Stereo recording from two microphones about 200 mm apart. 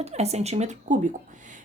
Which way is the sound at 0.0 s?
35° right (ahead or behind).